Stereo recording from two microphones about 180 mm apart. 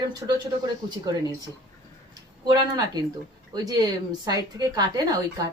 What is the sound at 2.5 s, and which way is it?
A woman's voice, 20° right (ahead or behind).